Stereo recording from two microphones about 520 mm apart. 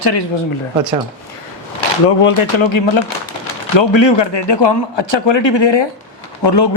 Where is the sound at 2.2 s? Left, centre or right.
Left.